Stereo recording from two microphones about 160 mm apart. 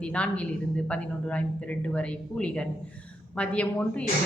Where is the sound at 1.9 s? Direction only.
5° left (ahead or behind).